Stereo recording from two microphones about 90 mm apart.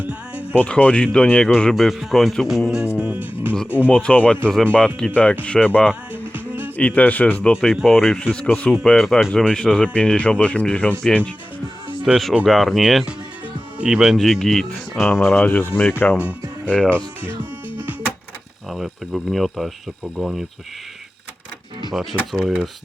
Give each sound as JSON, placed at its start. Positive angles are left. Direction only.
{"t": 0.0, "sound": "music", "side_deg": -15}
{"t": 0.5, "sound": "speech", "side_deg": 15}
{"t": 3.0, "sound": "music", "side_deg": -20}
{"t": 3.7, "sound": "speech", "side_deg": 20}
{"t": 5.9, "sound": "music", "side_deg": -20}
{"t": 6.7, "sound": "speech", "side_deg": 15}
{"t": 7.6, "sound": "speech", "side_deg": 0}
{"t": 8.8, "sound": "speech", "side_deg": 5}
{"t": 12.0, "sound": "speech", "side_deg": 0}
{"t": 15.0, "sound": "speech", "side_deg": 25}
{"t": 16.6, "sound": "speech", "side_deg": 10}
{"t": 18.7, "sound": "speech", "side_deg": 0}
{"t": 21.9, "sound": "speech", "side_deg": -5}